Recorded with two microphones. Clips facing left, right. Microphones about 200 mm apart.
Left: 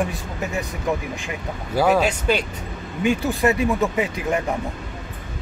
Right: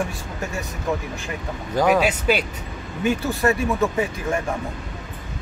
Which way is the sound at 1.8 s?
10° right (ahead or behind).